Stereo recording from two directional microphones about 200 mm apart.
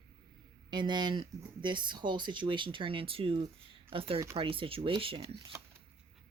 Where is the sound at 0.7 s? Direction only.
20° right (ahead or behind).